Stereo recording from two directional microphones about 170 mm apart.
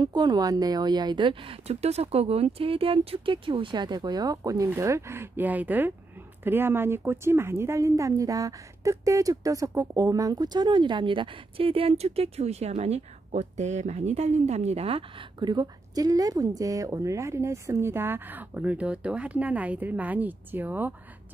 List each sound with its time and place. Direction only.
0.0 s a woman's voice: 25° right (ahead or behind)